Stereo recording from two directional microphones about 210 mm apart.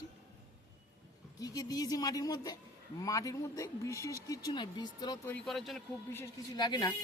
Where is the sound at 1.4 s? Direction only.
15° left (ahead or behind).